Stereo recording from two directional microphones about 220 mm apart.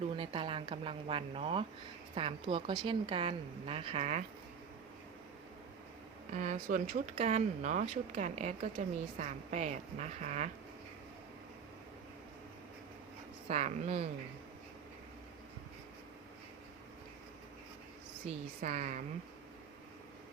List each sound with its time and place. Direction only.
0.2 s speech: 25° right (ahead or behind)
6.3 s speech: 35° right (ahead or behind)
13.5 s speech: 30° right (ahead or behind)
18.3 s speech: 30° right (ahead or behind)